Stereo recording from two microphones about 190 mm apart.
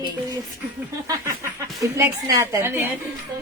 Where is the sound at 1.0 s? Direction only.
15° right (ahead or behind).